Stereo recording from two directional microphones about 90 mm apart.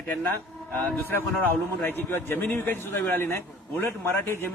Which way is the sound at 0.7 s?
20° left (ahead or behind).